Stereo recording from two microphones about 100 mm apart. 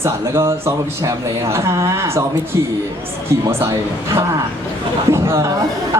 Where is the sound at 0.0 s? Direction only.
25° right (ahead or behind).